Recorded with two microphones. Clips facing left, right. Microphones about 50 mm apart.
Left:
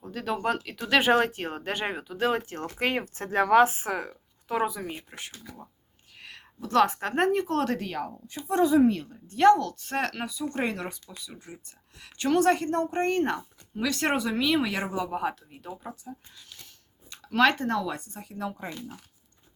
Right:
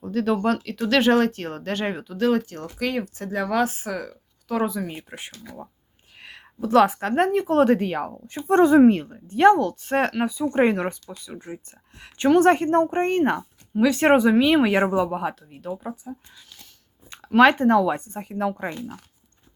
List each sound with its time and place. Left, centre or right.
0.0 s speech: centre
2.2 s speech: left
4.1 s a sound: centre
5.1 s speech: centre
7.4 s speech: centre
8.3 s speech: right
9.3 s speech: right
15.1 s speech: centre
16.3 s a sound: centre
17.2 s speech: right